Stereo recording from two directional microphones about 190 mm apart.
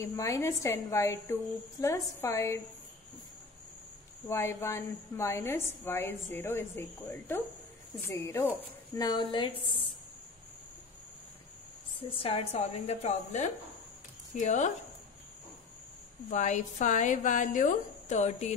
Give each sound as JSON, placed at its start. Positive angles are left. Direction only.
{"t": 0.0, "sound": "a woman's voice", "side_deg": 15}
{"t": 4.3, "sound": "a woman's voice", "side_deg": 15}
{"t": 12.2, "sound": "a woman's voice", "side_deg": 30}
{"t": 16.3, "sound": "a woman's voice", "side_deg": 40}